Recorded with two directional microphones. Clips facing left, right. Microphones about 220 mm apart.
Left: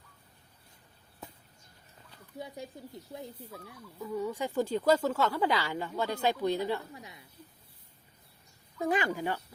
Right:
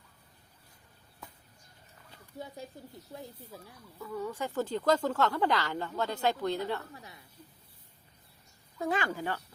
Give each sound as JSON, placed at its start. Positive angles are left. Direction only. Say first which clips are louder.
{"t": 4.0, "sound": "speech", "louder": "left 2 dB", "side_deg": 15}
{"t": 8.8, "sound": "speech", "louder": "left 2 dB", "side_deg": 15}